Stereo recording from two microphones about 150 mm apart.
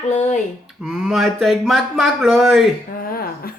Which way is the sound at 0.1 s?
50° left (ahead or behind).